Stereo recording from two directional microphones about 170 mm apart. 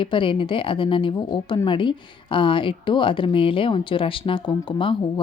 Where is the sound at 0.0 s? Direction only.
30° left (ahead or behind).